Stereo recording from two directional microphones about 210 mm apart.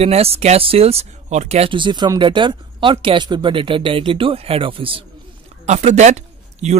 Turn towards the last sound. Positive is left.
turn(degrees=-30)  # may be behind; listen again after turning